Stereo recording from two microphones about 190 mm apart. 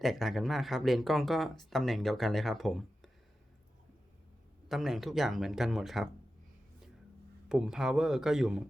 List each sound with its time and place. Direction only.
0.0 s speech: centre (ahead or behind)
4.7 s speech: centre (ahead or behind)
7.4 s speech: 5° right (ahead or behind)